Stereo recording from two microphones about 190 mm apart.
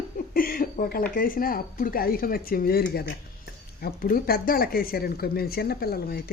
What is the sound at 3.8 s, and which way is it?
Speech, 50° left (ahead or behind).